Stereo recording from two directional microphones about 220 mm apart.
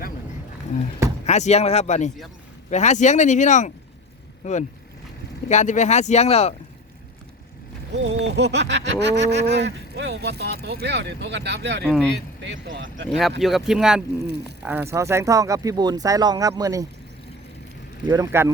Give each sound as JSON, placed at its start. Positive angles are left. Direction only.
{"t": 1.2, "sound": "speech", "side_deg": 30}
{"t": 5.5, "sound": "speech", "side_deg": 30}
{"t": 7.9, "sound": "speech", "side_deg": -55}
{"t": 11.8, "sound": "speech", "side_deg": 0}
{"t": 12.5, "sound": "speech", "side_deg": -50}
{"t": 13.1, "sound": "speech", "side_deg": 0}
{"t": 18.0, "sound": "speech", "side_deg": -15}